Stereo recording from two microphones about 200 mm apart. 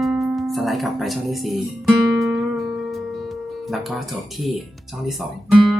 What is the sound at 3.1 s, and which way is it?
Guitar, centre (ahead or behind).